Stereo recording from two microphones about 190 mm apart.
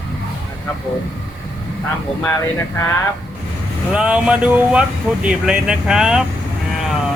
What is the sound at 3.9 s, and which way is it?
Speech, 5° right (ahead or behind).